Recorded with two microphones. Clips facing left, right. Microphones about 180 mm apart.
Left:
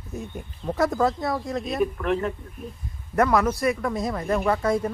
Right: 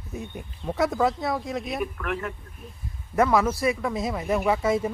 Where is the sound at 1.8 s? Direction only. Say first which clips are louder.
Left 6 dB; 25° left (ahead or behind).